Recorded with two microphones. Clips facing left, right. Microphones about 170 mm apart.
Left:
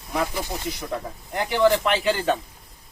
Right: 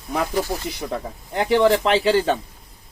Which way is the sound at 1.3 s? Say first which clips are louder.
Right 3 dB; 30° right (ahead or behind).